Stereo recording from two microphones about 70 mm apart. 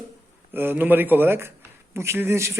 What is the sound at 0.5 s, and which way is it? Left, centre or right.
A man's voice, right.